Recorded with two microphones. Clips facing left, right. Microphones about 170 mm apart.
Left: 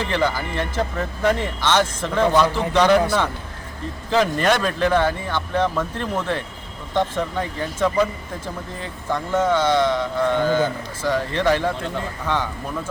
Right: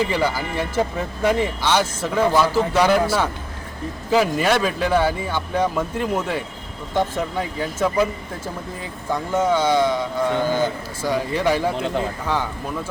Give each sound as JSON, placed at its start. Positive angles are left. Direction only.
{"t": 0.0, "sound": "speech", "side_deg": -10}